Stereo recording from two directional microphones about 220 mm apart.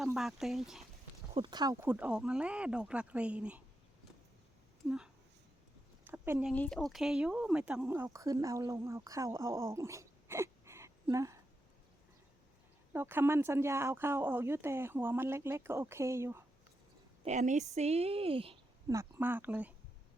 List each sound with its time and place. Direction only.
0.0 s speech: centre (ahead or behind)
1.3 s speech: 20° right (ahead or behind); by 3.6 s 5° right (ahead or behind)
4.9 s speech: centre (ahead or behind)
6.5 s speech: 5° left (ahead or behind); by 11.3 s 15° right (ahead or behind)
12.9 s speech: 10° right (ahead or behind)
17.2 s a woman's voice: 35° right (ahead or behind)
18.9 s speech: 10° right (ahead or behind)